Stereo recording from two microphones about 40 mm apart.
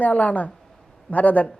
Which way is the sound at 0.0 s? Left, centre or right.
Left.